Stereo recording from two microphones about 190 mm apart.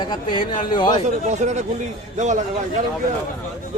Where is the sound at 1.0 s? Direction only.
35° right (ahead or behind).